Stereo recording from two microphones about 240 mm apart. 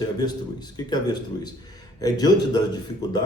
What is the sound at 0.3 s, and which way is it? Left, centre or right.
A man's voice, centre.